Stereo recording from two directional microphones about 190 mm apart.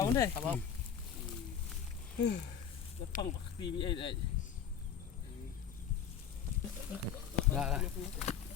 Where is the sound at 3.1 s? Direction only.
45° left (ahead or behind).